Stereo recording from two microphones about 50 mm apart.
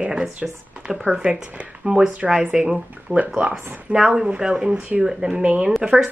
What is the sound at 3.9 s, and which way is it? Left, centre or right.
Speech, centre.